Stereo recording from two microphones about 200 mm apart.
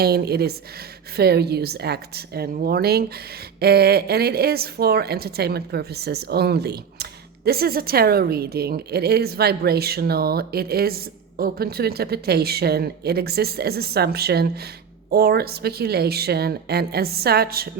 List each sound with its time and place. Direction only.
0.0 s a woman's voice: 50° right (ahead or behind)